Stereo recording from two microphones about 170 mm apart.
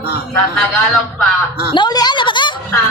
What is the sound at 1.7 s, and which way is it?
Speech, 25° left (ahead or behind).